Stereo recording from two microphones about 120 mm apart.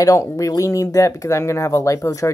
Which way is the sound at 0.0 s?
25° left (ahead or behind).